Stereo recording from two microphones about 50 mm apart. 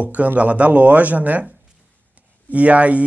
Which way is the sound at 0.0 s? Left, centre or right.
Right.